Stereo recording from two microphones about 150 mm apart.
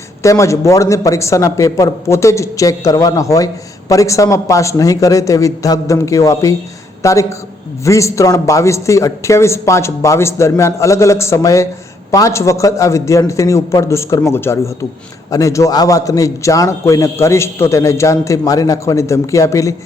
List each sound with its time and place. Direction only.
0.2 s speech: 20° left (ahead or behind)